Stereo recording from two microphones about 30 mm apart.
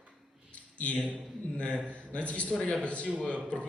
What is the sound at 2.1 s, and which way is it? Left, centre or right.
Speech, left.